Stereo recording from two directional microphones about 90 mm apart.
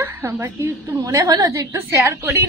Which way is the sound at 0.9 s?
40° right (ahead or behind).